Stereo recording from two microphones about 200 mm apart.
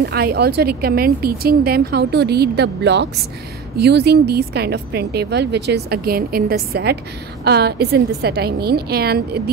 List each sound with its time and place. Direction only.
0.0 s a woman's voice: 50° right (ahead or behind)